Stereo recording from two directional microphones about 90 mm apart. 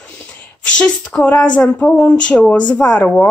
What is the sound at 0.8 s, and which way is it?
Speech, 15° left (ahead or behind).